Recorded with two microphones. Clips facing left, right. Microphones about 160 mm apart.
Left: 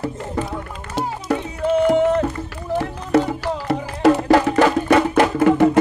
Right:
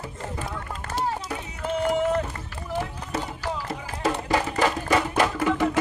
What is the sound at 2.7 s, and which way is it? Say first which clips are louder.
Music: left 11 dB; 70° left (ahead or behind).